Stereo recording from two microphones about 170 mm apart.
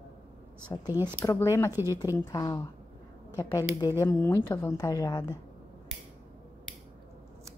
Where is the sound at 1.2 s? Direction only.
20° left (ahead or behind).